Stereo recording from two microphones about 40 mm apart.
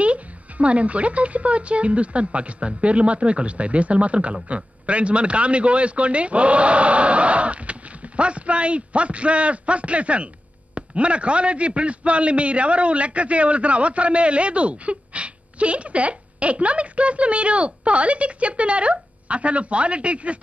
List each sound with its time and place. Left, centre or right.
0.0 s speech: right